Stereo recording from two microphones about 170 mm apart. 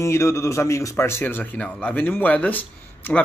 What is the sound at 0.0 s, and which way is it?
A man's voice, 15° left (ahead or behind).